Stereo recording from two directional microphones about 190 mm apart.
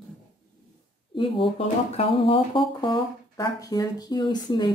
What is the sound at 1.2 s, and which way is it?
Speech, 30° left (ahead or behind).